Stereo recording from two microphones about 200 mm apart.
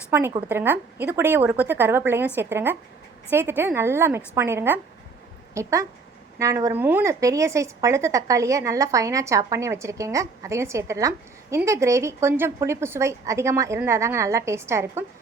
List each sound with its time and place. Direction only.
0.1 s a woman's voice: 15° right (ahead or behind)